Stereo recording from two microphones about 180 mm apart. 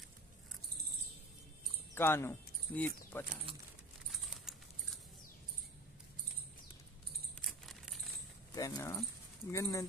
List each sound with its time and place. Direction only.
2.0 s speech: 15° left (ahead or behind)
4.1 s a sound: centre (ahead or behind)
7.4 s keys jangling: centre (ahead or behind)
8.5 s speech: 20° left (ahead or behind)